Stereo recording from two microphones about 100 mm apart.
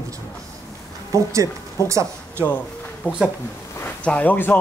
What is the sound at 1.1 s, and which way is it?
Speech, 35° right (ahead or behind).